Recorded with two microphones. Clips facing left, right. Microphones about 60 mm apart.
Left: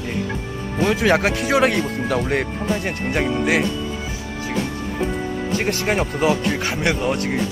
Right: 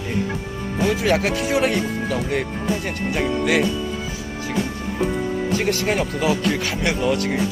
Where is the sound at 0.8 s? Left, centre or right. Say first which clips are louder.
Left 2 dB; left.